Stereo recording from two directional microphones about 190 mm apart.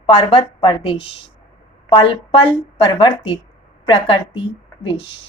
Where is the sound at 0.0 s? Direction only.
30° left (ahead or behind).